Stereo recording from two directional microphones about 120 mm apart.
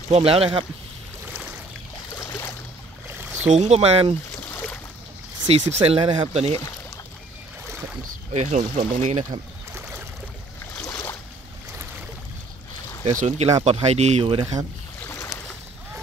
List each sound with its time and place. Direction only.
0.1 s speech: 55° right (ahead or behind)
2.1 s boat: 20° left (ahead or behind)
3.2 s a sound: 15° right (ahead or behind)
3.4 s speech: 65° right (ahead or behind)
5.5 s speech: 55° right (ahead or behind)
8.3 s speech: 75° right (ahead or behind)
10.8 s boat: 25° left (ahead or behind)
13.0 s speech: 80° right; by 14.4 s 60° right (ahead or behind)
15.0 s boat: 20° left (ahead or behind)